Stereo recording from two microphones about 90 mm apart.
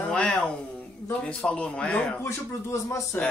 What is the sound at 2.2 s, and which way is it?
Speech, 30° left (ahead or behind).